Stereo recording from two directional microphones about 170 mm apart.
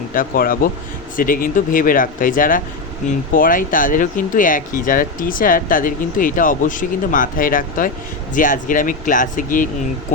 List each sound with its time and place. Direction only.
0.1 s speech: 55° left (ahead or behind)